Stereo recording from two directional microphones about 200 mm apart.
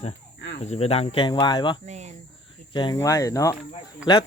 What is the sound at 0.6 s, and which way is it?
Speech, 30° left (ahead or behind).